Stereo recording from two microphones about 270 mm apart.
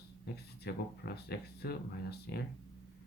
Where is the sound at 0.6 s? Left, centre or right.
Left.